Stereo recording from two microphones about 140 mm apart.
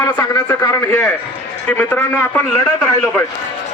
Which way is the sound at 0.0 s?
20° left (ahead or behind).